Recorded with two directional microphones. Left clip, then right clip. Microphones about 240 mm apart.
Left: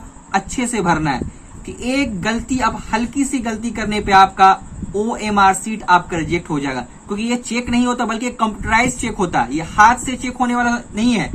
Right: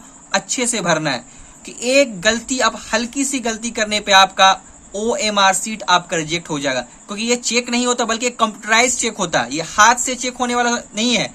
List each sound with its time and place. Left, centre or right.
0.3 s a woman's voice: right